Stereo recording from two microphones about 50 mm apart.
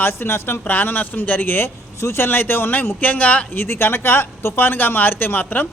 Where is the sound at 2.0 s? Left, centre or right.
Left.